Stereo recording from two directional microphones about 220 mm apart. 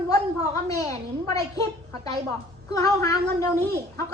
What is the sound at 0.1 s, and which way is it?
A woman's voice, 15° left (ahead or behind).